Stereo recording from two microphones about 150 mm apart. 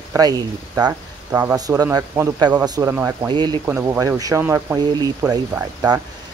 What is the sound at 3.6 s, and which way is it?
Speech, 15° right (ahead or behind).